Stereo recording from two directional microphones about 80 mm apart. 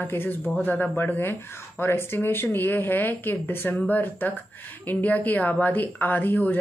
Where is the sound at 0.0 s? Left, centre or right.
Left.